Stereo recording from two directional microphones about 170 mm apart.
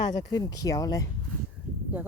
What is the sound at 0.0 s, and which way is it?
Speech, 25° left (ahead or behind).